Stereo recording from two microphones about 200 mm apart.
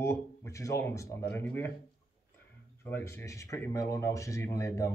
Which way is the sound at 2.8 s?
10° left (ahead or behind).